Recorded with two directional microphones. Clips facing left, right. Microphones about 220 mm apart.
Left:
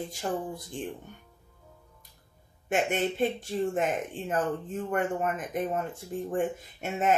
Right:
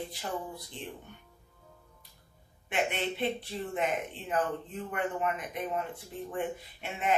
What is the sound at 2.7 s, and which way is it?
Speech, 45° left (ahead or behind).